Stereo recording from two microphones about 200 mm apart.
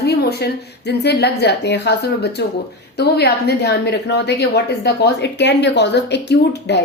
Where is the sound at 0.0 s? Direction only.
55° left (ahead or behind).